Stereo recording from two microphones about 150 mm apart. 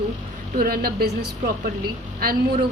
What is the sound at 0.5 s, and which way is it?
Speech, 85° right.